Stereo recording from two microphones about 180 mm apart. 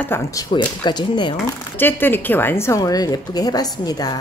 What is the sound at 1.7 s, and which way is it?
A woman's voice, 10° left (ahead or behind).